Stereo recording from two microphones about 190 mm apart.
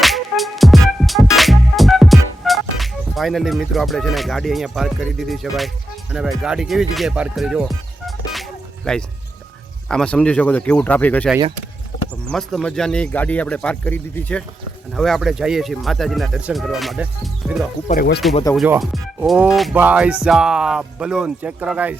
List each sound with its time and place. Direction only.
0.0 s music: centre (ahead or behind)
9.9 s speech: 5° left (ahead or behind)
12.3 s speech: centre (ahead or behind)
17.8 s speech: 50° left (ahead or behind)
18.5 s speech: 5° right (ahead or behind)